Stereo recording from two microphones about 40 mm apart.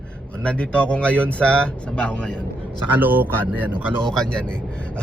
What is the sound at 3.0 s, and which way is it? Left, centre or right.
Speech, right.